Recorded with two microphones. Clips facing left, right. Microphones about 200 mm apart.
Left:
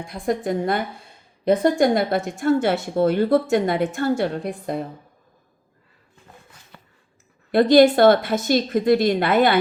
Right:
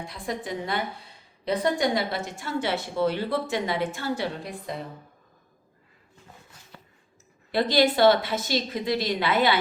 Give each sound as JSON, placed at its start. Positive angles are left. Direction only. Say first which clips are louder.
{"t": 0.1, "sound": "a woman's voice", "louder": "left 11 dB", "side_deg": 50}
{"t": 7.5, "sound": "a woman's voice", "louder": "left 9 dB", "side_deg": 50}